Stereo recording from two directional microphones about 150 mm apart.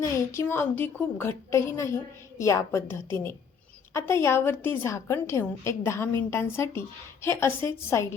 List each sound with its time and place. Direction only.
0.0 s a woman's voice: 20° left (ahead or behind)